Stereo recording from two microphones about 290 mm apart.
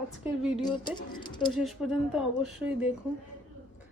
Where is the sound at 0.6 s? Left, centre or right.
Centre.